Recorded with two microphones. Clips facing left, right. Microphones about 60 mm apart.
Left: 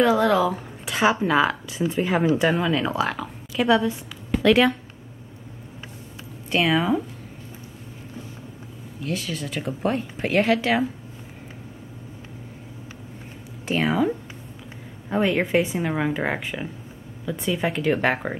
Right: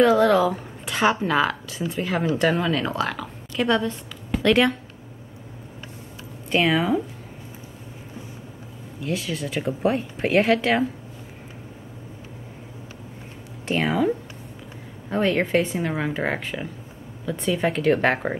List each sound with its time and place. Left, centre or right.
0.0 s a woman's voice: centre
1.8 s speech: centre
2.3 s a woman's voice: centre
6.5 s speech: centre
9.0 s speech: centre
13.7 s speech: centre